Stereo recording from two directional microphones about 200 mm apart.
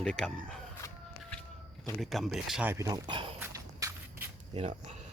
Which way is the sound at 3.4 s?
15° right (ahead or behind).